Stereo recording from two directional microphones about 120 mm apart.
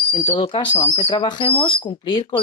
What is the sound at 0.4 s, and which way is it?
Speech, 45° left (ahead or behind).